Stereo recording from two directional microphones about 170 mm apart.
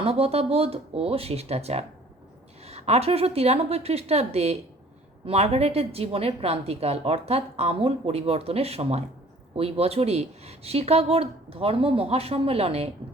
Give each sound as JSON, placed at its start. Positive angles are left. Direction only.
{"t": 0.0, "sound": "a woman's voice", "side_deg": -35}